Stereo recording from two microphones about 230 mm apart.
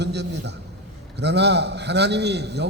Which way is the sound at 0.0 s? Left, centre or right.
Right.